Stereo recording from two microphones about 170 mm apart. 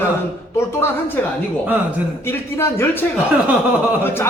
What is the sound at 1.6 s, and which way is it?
Speech, 10° right (ahead or behind).